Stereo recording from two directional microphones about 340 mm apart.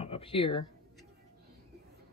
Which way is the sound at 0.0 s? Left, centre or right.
Centre.